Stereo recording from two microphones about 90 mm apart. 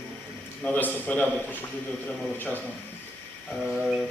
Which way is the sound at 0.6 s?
15° left (ahead or behind).